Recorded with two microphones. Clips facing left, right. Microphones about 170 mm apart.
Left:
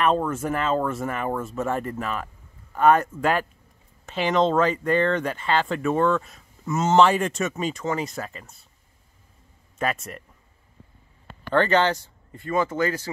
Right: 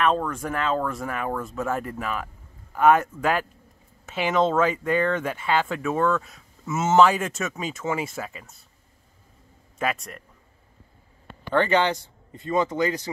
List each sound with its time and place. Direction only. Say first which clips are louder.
0.0 s speech: left 1 dB; 5° left (ahead or behind)
9.8 s speech: left 1 dB; centre (ahead or behind)
11.5 s speech: left 1 dB; 10° right (ahead or behind)